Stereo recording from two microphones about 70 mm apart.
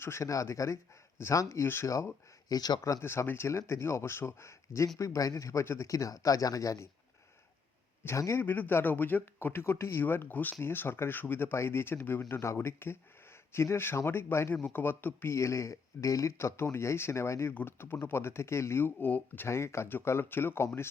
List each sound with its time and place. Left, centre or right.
0.0 s speech: left
1.9 s speech: left
2.6 s speech: left
3.0 s speech: left
8.0 s speech: left
8.4 s speech: left
14.5 s speech: left
17.5 s speech: left
19.5 s speech: left